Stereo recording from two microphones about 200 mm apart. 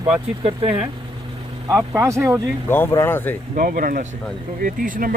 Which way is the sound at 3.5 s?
45° right (ahead or behind).